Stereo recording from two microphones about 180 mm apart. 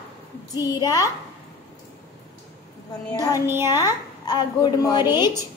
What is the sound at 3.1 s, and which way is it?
Speech, 20° left (ahead or behind).